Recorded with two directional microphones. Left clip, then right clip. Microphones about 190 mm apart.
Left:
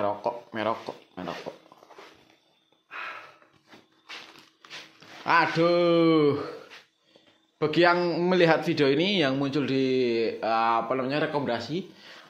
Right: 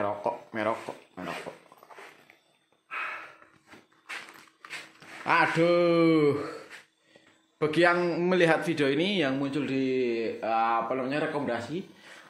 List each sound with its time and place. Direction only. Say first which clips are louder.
0.0 s speech: left 2 dB; centre (ahead or behind)
5.2 s a man's voice: left 1 dB; centre (ahead or behind)